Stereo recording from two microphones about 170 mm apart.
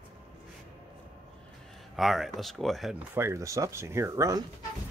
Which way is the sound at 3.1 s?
15° right (ahead or behind).